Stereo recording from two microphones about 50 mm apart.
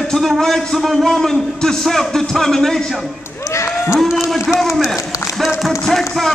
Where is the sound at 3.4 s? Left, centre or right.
Left.